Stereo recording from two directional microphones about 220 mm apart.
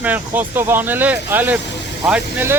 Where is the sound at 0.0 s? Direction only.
10° right (ahead or behind).